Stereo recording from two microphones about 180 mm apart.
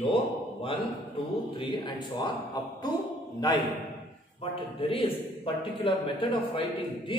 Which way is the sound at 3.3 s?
20° left (ahead or behind).